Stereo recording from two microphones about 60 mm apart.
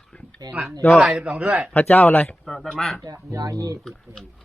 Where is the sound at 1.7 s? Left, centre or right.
Left.